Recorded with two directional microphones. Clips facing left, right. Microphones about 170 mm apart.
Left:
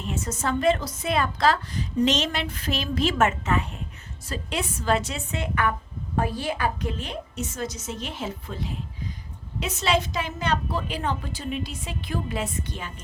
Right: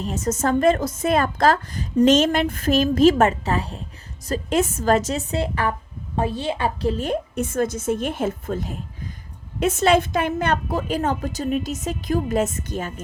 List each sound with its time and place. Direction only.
0.0 s a woman's voice: 40° right (ahead or behind)
7.0 s a woman's voice: 50° right (ahead or behind)